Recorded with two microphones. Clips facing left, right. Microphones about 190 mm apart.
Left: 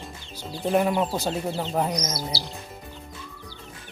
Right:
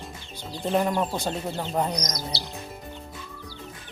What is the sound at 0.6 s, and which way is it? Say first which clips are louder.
Speech: left 2 dB; 5° left (ahead or behind).